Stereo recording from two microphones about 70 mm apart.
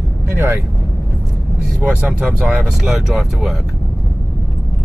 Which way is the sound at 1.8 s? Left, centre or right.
Centre.